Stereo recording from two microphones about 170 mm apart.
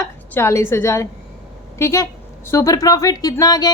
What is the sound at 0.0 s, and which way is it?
A woman's voice, 15° left (ahead or behind).